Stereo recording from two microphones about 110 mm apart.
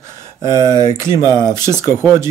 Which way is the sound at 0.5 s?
40° left (ahead or behind).